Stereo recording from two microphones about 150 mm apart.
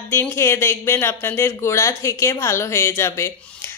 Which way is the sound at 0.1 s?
15° left (ahead or behind).